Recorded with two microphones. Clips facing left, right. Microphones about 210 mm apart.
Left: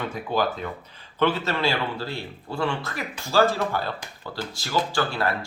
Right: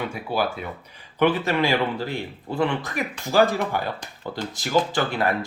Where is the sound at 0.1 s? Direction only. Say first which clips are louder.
Even; 10° right (ahead or behind).